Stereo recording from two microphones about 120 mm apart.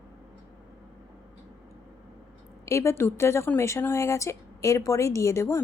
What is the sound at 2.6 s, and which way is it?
Speech, 25° left (ahead or behind).